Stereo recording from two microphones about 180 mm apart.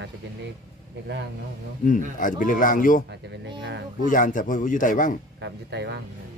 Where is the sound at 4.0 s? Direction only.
50° left (ahead or behind).